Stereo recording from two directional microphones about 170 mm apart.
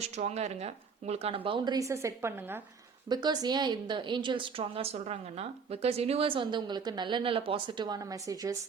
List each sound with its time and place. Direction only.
0.0 s a woman's voice: 40° right (ahead or behind); by 8.5 s 20° right (ahead or behind)